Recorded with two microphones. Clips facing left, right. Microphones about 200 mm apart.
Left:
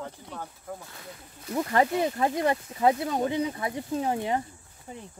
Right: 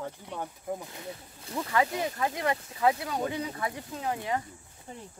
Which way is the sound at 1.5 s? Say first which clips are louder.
Left 4 dB; 35° left (ahead or behind).